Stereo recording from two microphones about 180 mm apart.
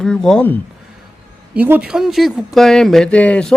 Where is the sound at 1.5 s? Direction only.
10° right (ahead or behind).